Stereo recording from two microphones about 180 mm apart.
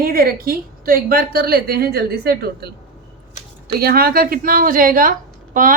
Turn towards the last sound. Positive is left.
turn(degrees=-50)  # may be behind; listen again after turning